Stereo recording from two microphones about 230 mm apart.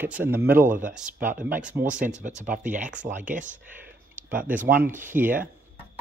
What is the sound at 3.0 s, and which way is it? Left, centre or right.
Speech, right.